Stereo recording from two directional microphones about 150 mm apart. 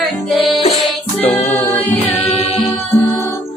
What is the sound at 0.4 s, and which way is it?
Music, 40° left (ahead or behind).